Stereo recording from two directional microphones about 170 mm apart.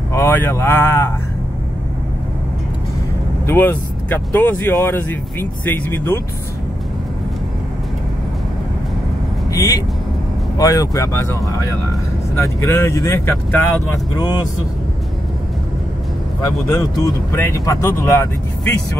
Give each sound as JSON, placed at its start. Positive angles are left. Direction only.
{"t": 0.1, "sound": "speech", "side_deg": 15}
{"t": 3.4, "sound": "speech", "side_deg": 10}
{"t": 9.5, "sound": "speech", "side_deg": 20}
{"t": 12.4, "sound": "speech", "side_deg": 15}
{"t": 16.3, "sound": "speech", "side_deg": 20}